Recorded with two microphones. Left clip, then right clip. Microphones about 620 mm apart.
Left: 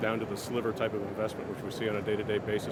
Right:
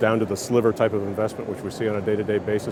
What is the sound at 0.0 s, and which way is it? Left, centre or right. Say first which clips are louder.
Speech: right 11 dB; right.